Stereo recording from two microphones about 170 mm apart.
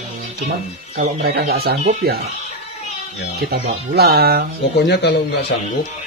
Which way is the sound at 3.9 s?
65° right (ahead or behind).